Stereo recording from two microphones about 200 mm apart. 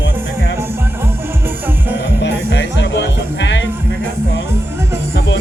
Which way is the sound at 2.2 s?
60° left (ahead or behind).